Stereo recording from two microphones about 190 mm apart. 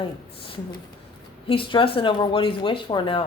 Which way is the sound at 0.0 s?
25° left (ahead or behind).